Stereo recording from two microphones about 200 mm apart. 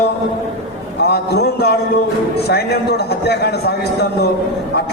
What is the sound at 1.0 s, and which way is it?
A man's voice, 55° left (ahead or behind).